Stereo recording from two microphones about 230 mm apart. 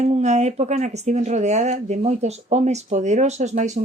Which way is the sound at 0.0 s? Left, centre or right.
Right.